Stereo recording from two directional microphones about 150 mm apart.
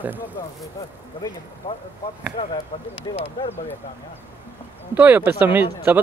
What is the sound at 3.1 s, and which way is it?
Speech, 40° left (ahead or behind).